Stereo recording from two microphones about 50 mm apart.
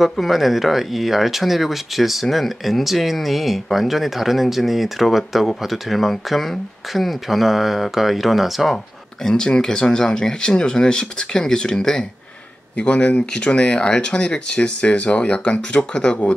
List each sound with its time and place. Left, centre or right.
0.0 s speech: centre
9.2 s speech: centre
12.7 s speech: left